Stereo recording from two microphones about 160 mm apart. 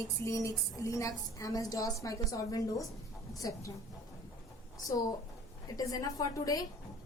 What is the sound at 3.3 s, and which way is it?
Speech, 20° left (ahead or behind).